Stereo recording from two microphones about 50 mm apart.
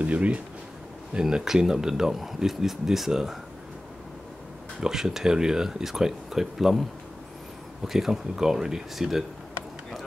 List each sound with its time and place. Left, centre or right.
0.0 s speech: right
1.2 s speech: centre
4.7 s speech: centre